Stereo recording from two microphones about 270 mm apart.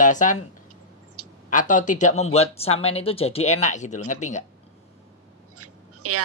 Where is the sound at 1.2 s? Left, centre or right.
Right.